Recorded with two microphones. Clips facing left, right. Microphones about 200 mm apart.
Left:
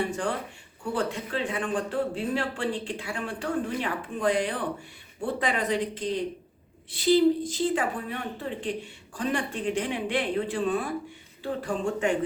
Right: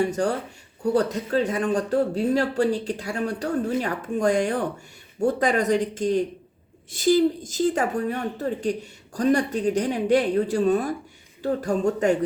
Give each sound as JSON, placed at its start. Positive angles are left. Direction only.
{"t": 0.0, "sound": "a woman's voice", "side_deg": -40}